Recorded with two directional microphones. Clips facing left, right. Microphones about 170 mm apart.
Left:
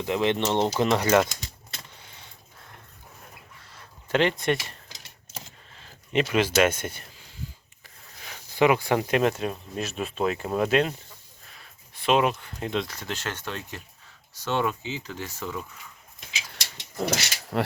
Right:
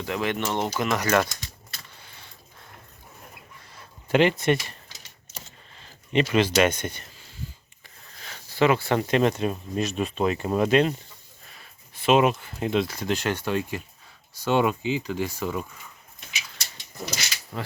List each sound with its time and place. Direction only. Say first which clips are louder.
0.0 s speech: left 3 dB; 20° left (ahead or behind)
4.1 s speech: right 3 dB; 10° right (ahead or behind)
6.1 s speech: right 1 dB; 5° left (ahead or behind)
8.2 s speech: even; 10° left (ahead or behind)
11.9 s speech: right 3 dB; 5° right (ahead or behind)
16.7 s a sound: left 7 dB; 70° left (ahead or behind)